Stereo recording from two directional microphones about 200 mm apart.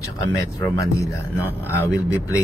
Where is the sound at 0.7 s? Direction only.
15° left (ahead or behind).